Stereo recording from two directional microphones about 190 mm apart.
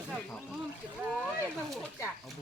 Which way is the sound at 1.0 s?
5° right (ahead or behind).